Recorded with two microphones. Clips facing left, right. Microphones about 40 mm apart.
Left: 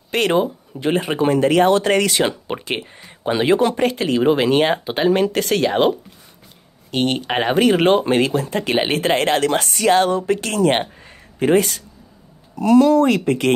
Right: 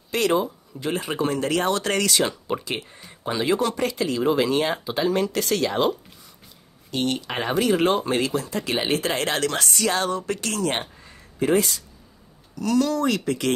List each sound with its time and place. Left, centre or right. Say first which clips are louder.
0.1 s speech: left 4 dB; left
12.5 s speech: left 9 dB; left